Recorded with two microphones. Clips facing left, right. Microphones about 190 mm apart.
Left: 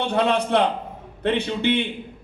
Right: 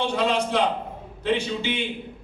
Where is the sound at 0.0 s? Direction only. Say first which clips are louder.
Left 2 dB; 60° left (ahead or behind).